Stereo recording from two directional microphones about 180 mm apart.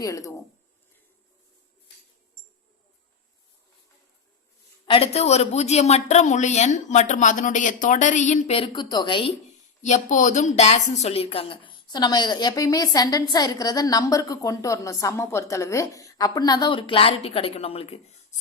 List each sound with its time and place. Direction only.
0.0 s speech: 20° left (ahead or behind)
4.9 s a woman's voice: 35° left (ahead or behind)
8.5 s speech: 30° left (ahead or behind)
9.8 s speech: 40° left (ahead or behind)